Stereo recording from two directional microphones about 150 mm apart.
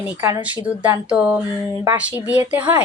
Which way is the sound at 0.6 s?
10° right (ahead or behind).